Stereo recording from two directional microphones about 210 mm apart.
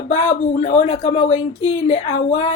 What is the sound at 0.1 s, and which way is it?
A woman's voice, 30° left (ahead or behind).